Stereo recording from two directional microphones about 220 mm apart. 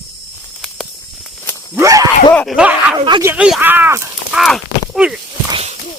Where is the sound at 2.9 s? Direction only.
20° right (ahead or behind).